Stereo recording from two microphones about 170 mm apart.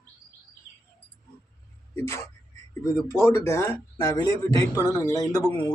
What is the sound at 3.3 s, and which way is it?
Speech, 15° left (ahead or behind).